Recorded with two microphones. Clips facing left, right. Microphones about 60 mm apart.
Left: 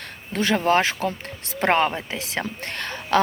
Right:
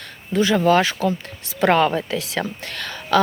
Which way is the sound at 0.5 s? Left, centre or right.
Left.